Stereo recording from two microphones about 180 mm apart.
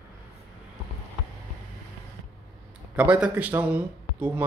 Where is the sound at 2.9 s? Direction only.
5° right (ahead or behind).